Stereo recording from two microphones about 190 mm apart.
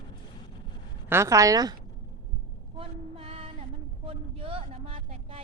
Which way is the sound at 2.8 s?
30° right (ahead or behind).